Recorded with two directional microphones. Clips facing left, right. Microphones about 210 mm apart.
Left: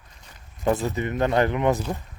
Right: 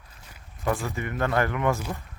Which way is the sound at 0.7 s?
20° left (ahead or behind).